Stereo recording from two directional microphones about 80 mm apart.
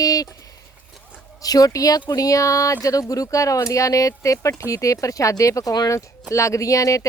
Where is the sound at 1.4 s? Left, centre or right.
Left.